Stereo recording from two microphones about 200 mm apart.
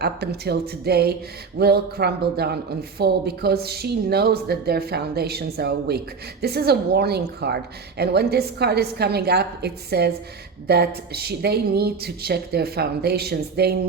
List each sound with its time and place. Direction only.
0.0 s a woman's voice: 55° right (ahead or behind)